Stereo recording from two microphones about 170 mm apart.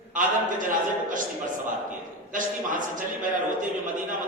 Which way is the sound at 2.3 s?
50° right (ahead or behind).